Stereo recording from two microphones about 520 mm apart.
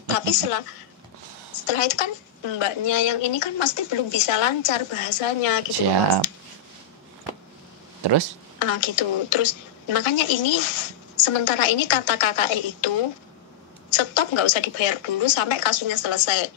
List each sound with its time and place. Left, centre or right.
0.1 s a woman's voice: left
1.7 s speech: left
8.0 s speech: right
8.5 s a woman's voice: left
13.9 s a woman's voice: left